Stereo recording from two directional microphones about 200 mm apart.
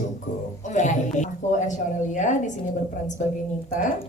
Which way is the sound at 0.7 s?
35° left (ahead or behind).